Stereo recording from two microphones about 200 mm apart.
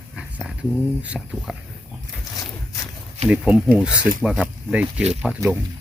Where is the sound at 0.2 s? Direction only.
5° right (ahead or behind).